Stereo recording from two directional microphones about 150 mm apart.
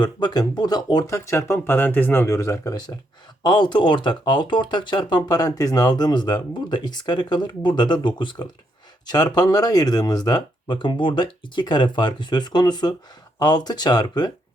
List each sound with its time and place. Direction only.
0.0 s speech: 30° left (ahead or behind)